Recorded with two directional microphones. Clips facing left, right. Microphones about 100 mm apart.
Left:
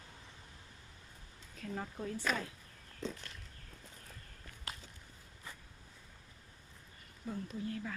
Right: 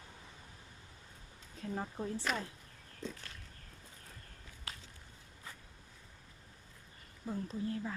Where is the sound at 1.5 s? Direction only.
25° right (ahead or behind).